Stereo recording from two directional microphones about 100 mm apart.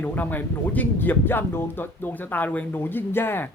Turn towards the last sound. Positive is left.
turn(degrees=20)  # may be behind; listen again after turning